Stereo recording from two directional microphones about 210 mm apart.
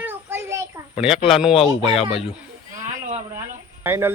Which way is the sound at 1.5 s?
30° left (ahead or behind).